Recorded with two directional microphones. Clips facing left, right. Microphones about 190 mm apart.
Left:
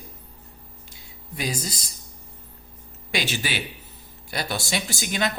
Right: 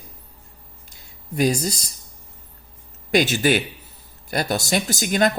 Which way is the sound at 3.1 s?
45° right (ahead or behind).